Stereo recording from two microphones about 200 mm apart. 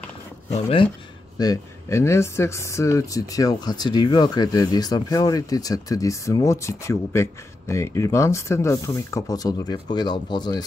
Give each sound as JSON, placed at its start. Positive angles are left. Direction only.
{"t": 0.5, "sound": "speech", "side_deg": 30}
{"t": 1.4, "sound": "speech", "side_deg": 15}